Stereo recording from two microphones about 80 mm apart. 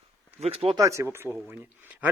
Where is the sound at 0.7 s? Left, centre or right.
Right.